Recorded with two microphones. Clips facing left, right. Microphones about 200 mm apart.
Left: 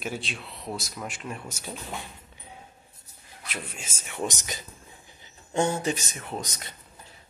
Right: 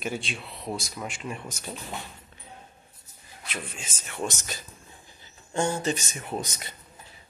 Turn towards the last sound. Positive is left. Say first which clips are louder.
# right 2 dB
turn(degrees=-5)  # may be behind; listen again after turning